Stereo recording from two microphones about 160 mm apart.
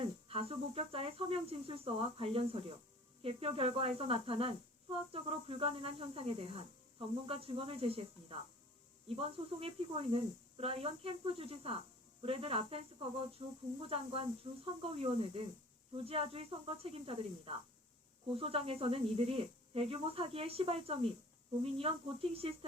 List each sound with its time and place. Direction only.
0.0 s speech: 35° right (ahead or behind)